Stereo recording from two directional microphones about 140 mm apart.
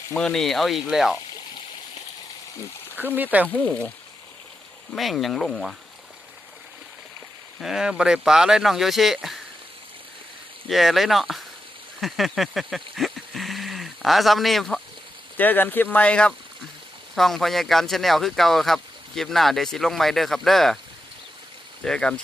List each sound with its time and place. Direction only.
0.1 s speech: 5° left (ahead or behind)
2.9 s speech: 15° right (ahead or behind)
3.5 s speech: 10° left (ahead or behind)
7.6 s speech: 5° right (ahead or behind)
10.7 s speech: centre (ahead or behind)
11.9 s a sound: centre (ahead or behind)
15.4 s speech: 15° left (ahead or behind)
21.8 s speech: 5° left (ahead or behind)